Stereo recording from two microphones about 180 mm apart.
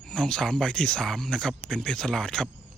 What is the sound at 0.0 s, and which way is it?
Speech, 5° left (ahead or behind).